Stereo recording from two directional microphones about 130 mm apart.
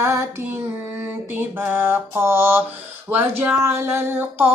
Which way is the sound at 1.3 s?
15° right (ahead or behind).